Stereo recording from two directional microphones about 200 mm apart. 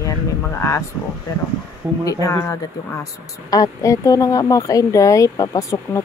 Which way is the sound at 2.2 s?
15° left (ahead or behind).